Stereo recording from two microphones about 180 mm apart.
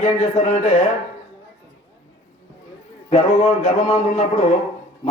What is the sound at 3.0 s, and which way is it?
A man's voice, 35° left (ahead or behind).